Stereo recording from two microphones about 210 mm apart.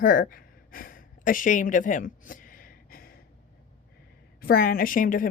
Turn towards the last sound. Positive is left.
turn(degrees=40)  # may be behind; listen again after turning